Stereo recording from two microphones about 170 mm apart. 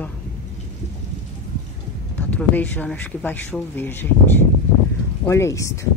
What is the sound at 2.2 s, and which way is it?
Speech, 10° left (ahead or behind).